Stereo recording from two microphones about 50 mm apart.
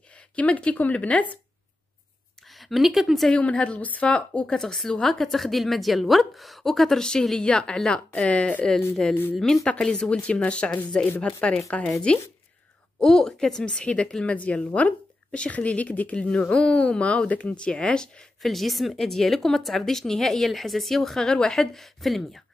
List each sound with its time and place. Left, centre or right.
0.4 s speech: left
2.5 s speech: centre
3.3 s speech: left
4.5 s a woman's voice: centre; by 8.6 s left
9.3 s speech: centre; by 11.3 s left
11.7 s speech: left
13.0 s speech: centre
13.7 s speech: left
16.2 s speech: centre
18.4 s a woman's voice: centre